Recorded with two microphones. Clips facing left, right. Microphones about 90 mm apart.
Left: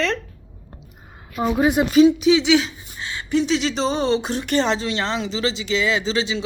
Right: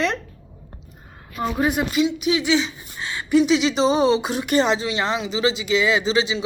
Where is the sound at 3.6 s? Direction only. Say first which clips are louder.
Right 4 dB; 5° right (ahead or behind).